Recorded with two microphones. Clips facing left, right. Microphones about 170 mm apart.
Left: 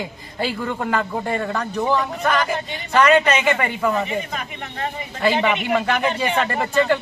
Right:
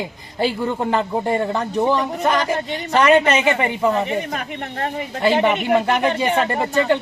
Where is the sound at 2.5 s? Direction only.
45° right (ahead or behind).